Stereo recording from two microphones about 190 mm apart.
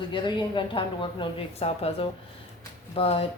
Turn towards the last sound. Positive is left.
turn(degrees=30)  # may be behind; listen again after turning